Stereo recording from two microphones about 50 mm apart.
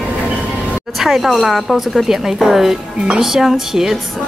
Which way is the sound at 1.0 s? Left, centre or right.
Centre.